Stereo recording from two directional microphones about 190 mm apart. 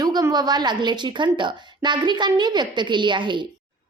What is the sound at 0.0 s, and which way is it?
A woman's voice, 20° right (ahead or behind).